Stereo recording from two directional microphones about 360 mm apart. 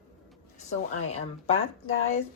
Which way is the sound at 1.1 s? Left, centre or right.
Centre.